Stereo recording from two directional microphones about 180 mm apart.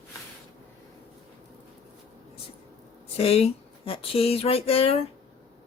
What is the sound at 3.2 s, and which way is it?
Speech, 35° left (ahead or behind).